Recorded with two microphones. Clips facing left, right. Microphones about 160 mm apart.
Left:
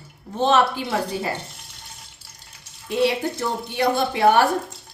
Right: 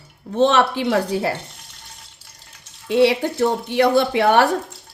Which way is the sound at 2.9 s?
80° right.